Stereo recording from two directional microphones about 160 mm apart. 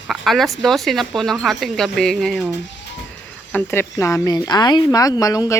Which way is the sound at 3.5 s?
15° left (ahead or behind).